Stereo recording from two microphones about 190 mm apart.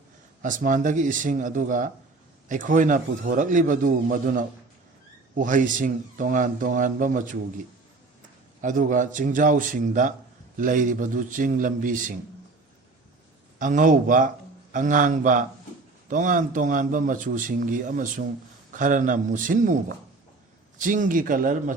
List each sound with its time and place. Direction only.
0.4 s a man's voice: 45° right (ahead or behind)
8.6 s a man's voice: 45° right (ahead or behind)
13.6 s a man's voice: 45° right (ahead or behind)